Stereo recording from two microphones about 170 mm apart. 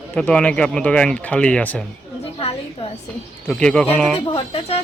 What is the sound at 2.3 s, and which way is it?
Speech, 35° left (ahead or behind).